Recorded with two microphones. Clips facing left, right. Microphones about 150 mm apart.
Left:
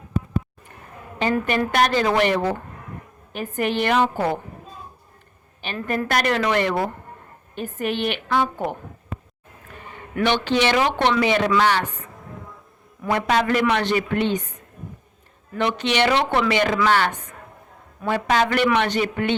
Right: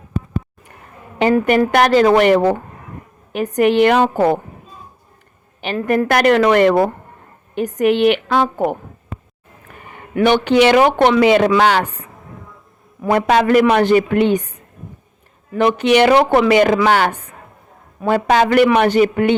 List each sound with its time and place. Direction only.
1.2 s a woman's voice: 55° right (ahead or behind)
3.6 s a woman's voice: 60° right (ahead or behind)
6.0 s a woman's voice: 55° right (ahead or behind)
7.5 s a woman's voice: 75° right (ahead or behind); by 8.8 s 50° right (ahead or behind)
9.9 s a woman's voice: 50° right (ahead or behind)
13.0 s speech: 50° right (ahead or behind)
14.3 s a woman's voice: 10° right (ahead or behind)
15.8 s speech: 50° right (ahead or behind)